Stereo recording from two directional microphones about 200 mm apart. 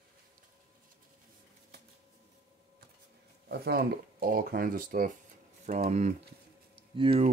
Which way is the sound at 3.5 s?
50° right (ahead or behind).